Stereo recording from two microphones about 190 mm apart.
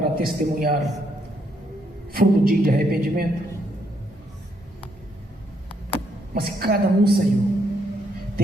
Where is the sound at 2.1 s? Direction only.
50° right (ahead or behind).